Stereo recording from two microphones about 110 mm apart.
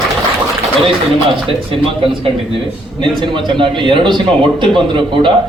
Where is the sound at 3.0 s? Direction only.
50° right (ahead or behind).